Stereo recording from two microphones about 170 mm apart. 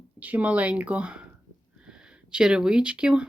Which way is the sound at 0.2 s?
10° right (ahead or behind).